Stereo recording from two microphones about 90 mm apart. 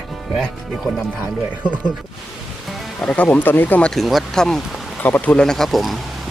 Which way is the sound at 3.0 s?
15° left (ahead or behind).